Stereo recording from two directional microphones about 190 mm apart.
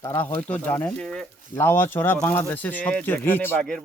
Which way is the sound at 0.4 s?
10° left (ahead or behind).